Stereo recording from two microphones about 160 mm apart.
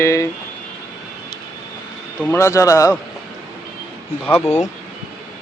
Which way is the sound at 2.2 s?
15° left (ahead or behind).